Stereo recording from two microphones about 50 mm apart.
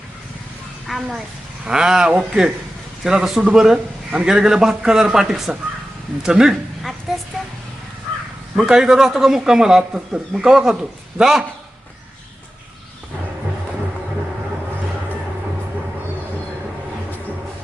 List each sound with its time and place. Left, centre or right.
0.9 s a child's voice: centre
1.6 s a man's voice: centre
7.1 s speech: centre
8.6 s a man's voice: centre